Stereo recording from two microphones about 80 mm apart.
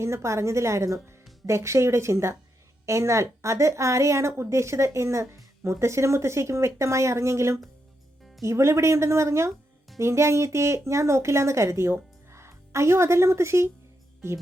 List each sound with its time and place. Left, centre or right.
0.0 s a woman's voice: right